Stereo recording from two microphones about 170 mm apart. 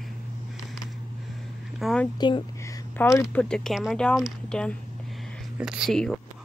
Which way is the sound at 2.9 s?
15° left (ahead or behind).